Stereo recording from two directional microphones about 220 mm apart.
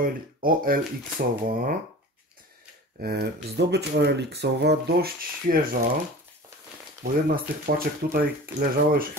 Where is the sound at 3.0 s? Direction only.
45° right (ahead or behind).